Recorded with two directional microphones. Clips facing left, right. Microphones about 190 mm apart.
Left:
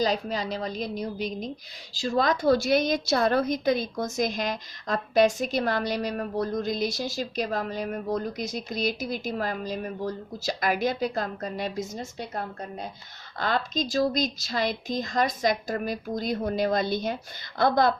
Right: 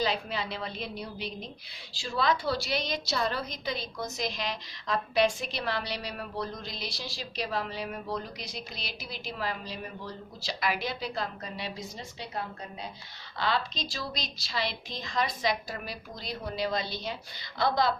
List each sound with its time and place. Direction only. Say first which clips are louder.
0.0 s a woman's voice: left 5 dB; 40° left (ahead or behind)